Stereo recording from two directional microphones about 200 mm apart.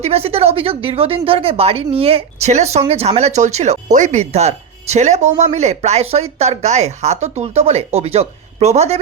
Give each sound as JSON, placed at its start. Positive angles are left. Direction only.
{"t": 0.0, "sound": "a woman's voice", "side_deg": -30}